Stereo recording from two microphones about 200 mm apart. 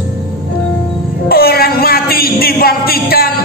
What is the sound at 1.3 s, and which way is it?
Speech, 50° left (ahead or behind).